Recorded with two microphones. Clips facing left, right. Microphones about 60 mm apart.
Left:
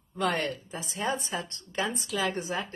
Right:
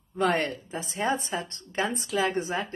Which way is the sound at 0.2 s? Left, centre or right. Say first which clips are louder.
Right 3 dB; right.